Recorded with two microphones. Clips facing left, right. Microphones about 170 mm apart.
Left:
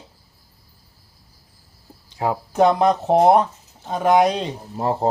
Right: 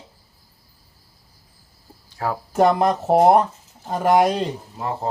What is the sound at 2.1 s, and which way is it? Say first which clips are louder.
Speech: left 3 dB; 20° left (ahead or behind).